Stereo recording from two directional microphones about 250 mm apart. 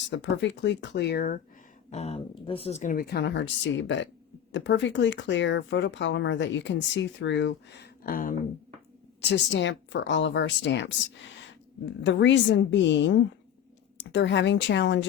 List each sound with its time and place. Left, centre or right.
0.1 s speech: left
1.9 s speech: left
9.2 s speech: left
12.0 s speech: left